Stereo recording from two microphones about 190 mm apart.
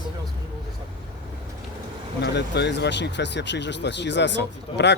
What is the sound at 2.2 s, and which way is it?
Speech, 60° left (ahead or behind).